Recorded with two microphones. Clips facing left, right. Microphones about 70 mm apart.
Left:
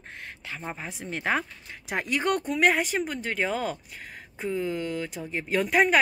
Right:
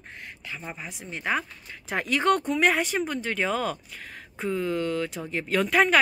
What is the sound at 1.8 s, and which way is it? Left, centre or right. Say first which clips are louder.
Speech: right 3 dB; centre.